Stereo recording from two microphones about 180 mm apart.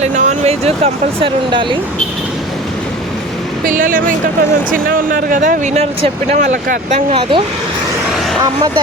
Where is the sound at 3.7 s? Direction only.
50° right (ahead or behind).